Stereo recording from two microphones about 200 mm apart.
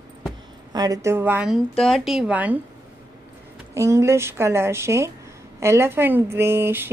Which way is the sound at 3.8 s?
15° right (ahead or behind).